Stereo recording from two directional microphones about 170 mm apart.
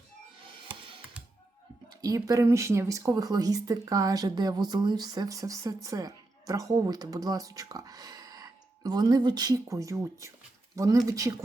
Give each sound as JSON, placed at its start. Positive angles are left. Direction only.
{"t": 0.7, "sound": "music", "side_deg": -30}
{"t": 1.9, "sound": "speech", "side_deg": -20}